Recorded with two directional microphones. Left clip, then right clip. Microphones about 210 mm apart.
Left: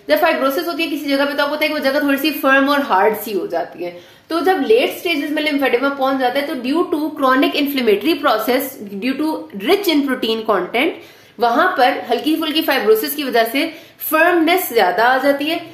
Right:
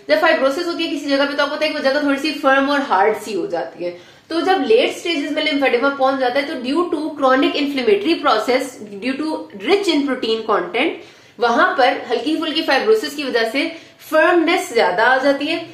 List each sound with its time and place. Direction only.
0.1 s a woman's voice: 40° left (ahead or behind)
5.0 s a woman's voice: 40° left (ahead or behind)